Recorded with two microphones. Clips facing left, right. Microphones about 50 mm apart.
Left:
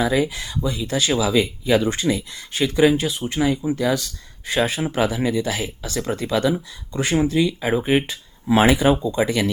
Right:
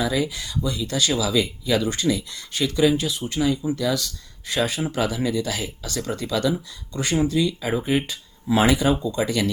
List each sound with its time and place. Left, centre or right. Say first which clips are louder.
0.0 s speech: left 4 dB; left